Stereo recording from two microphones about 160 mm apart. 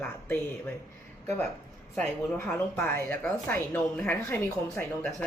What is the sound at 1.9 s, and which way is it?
A woman's voice, 5° left (ahead or behind).